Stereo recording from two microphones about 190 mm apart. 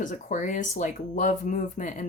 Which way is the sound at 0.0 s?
40° left (ahead or behind).